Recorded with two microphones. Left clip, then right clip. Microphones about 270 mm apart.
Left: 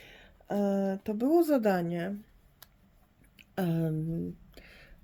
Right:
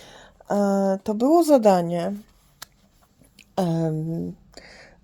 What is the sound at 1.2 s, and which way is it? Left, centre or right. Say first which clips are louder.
Speech: right 9 dB; centre.